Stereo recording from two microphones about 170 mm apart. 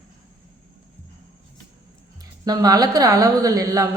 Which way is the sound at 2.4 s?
20° right (ahead or behind).